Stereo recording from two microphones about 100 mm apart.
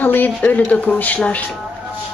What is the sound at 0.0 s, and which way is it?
Speech, 20° left (ahead or behind).